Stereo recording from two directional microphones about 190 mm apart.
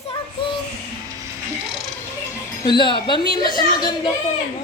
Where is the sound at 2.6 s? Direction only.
25° left (ahead or behind).